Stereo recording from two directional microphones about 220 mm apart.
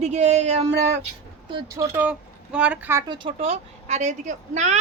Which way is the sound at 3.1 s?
25° right (ahead or behind).